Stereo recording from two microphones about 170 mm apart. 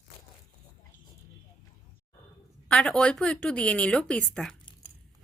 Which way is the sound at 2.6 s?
5° left (ahead or behind).